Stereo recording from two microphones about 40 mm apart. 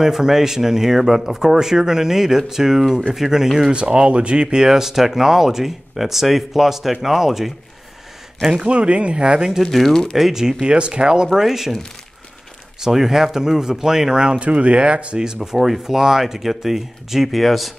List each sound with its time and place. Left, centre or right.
0.0 s speech: centre
3.7 s speech: right
4.6 s speech: centre
8.6 s speech: right
9.6 s speech: centre
10.1 s speech: centre
11.3 s speech: centre
12.8 s speech: centre
14.4 s speech: right; by 17.7 s centre